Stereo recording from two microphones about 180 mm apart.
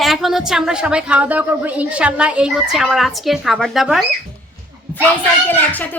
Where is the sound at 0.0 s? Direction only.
Centre (ahead or behind).